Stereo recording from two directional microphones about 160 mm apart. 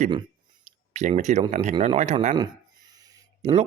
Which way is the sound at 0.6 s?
45° right (ahead or behind).